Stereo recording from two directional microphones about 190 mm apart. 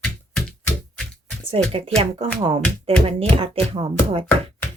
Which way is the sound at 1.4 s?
30° right (ahead or behind).